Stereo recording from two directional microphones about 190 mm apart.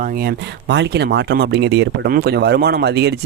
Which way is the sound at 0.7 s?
65° right (ahead or behind).